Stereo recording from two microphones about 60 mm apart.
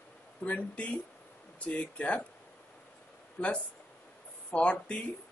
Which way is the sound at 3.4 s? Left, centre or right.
Left.